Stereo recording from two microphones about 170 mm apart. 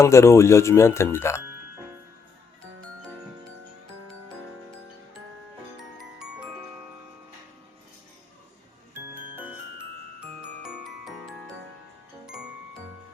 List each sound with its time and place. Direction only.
0.0 s speech: 15° left (ahead or behind)
6.0 s glockenspiel: 5° right (ahead or behind)
9.1 s music: 10° right (ahead or behind)
10.6 s music: centre (ahead or behind)